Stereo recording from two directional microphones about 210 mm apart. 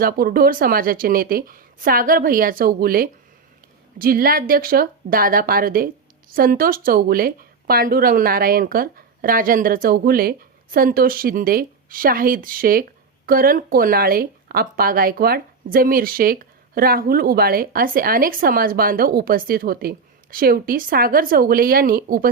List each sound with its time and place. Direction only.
0.0 s speech: 45° right (ahead or behind)